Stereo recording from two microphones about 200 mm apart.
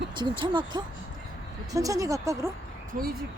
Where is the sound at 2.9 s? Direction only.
40° right (ahead or behind).